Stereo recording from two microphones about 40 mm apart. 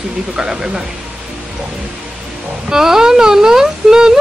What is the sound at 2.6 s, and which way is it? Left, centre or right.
A woman's voice, centre.